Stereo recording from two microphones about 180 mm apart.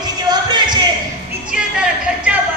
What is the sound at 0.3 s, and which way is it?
Music, 25° right (ahead or behind).